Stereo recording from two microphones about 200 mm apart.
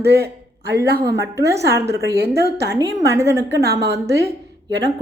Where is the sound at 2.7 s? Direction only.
15° right (ahead or behind).